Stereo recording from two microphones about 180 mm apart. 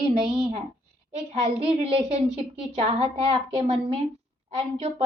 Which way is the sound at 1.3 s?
35° right (ahead or behind).